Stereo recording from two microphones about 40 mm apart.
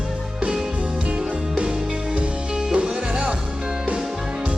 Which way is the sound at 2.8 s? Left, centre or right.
Right.